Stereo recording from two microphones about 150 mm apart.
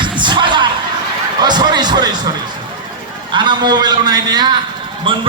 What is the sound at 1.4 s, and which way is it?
Speech, 30° right (ahead or behind).